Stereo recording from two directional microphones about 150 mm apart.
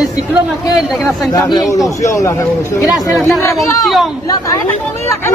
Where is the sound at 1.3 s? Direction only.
25° left (ahead or behind).